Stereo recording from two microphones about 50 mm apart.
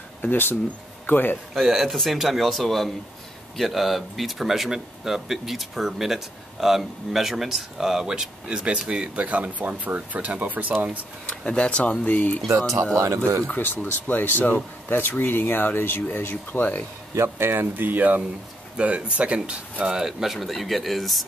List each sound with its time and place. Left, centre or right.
0.2 s a man's voice: left
1.5 s speech: centre; by 10.7 s right
11.2 s speech: left
12.9 s speech: right
13.7 s speech: left
17.1 s speech: right
18.8 s speech: right
20.0 s speech: centre